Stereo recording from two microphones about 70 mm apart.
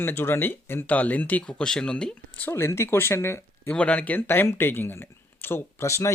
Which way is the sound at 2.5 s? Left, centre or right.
Left.